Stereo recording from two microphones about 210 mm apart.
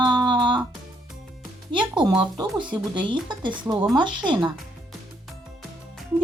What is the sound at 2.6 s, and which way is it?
Speech, 20° right (ahead or behind).